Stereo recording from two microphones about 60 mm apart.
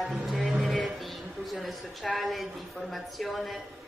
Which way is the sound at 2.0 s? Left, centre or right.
Centre.